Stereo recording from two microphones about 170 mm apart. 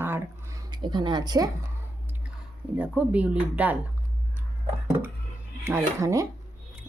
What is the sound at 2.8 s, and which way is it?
Speech, 10° right (ahead or behind).